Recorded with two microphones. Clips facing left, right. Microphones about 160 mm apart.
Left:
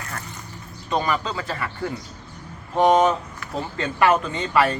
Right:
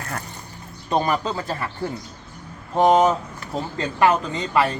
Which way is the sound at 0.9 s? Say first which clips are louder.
Right 2 dB; 40° right (ahead or behind).